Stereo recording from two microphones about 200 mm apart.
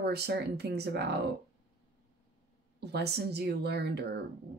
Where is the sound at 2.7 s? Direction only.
55° right (ahead or behind).